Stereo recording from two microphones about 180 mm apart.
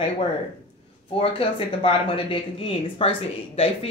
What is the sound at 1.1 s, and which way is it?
Speech, 30° left (ahead or behind).